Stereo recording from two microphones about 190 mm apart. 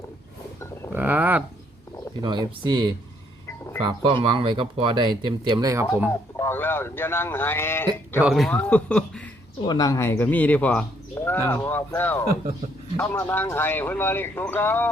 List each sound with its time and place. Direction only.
0.9 s speech: 10° right (ahead or behind)
2.2 s speech: 25° right (ahead or behind)
4.0 s speech: 25° right (ahead or behind)
6.1 s speech: 15° left (ahead or behind)
8.2 s speech: centre (ahead or behind)
9.6 s speech: 20° left (ahead or behind)